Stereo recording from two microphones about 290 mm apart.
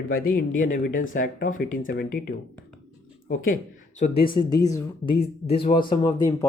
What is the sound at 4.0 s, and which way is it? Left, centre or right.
Speech, left.